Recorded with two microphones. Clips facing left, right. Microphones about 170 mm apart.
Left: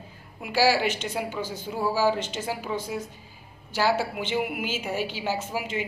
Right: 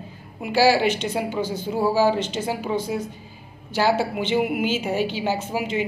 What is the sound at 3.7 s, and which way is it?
A woman's voice, 25° right (ahead or behind).